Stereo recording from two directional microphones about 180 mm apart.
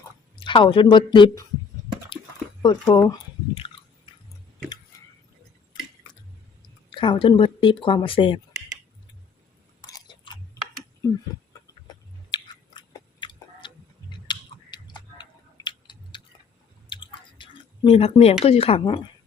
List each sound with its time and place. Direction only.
0.3 s speech: 25° left (ahead or behind)
2.6 s speech: 25° left (ahead or behind)
5.7 s drip: 25° left (ahead or behind)
6.9 s speech: 30° left (ahead or behind)
9.8 s a sound: 25° left (ahead or behind)
12.3 s a sound: 25° left (ahead or behind)
16.9 s chewing: 25° left (ahead or behind)
18.4 s speech: 35° left (ahead or behind)